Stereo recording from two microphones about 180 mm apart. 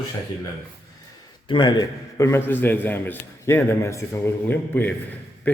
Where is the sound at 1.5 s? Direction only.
25° left (ahead or behind).